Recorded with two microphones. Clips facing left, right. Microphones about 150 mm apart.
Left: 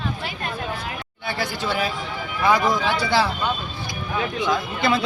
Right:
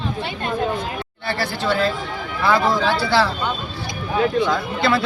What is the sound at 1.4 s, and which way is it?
A man's voice, 15° left (ahead or behind).